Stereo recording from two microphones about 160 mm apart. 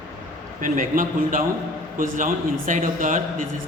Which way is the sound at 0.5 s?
55° right (ahead or behind).